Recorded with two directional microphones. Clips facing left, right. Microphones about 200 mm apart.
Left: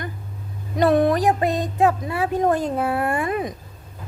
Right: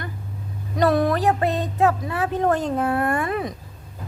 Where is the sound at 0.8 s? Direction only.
20° left (ahead or behind).